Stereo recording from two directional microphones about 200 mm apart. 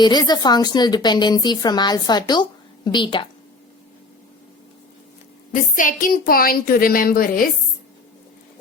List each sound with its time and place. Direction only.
0.0 s a woman's voice: 20° left (ahead or behind)
5.5 s a woman's voice: 40° left (ahead or behind)